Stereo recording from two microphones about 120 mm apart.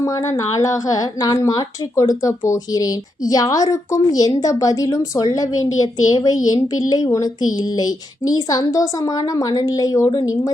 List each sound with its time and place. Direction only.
0.0 s a woman's voice: 25° left (ahead or behind)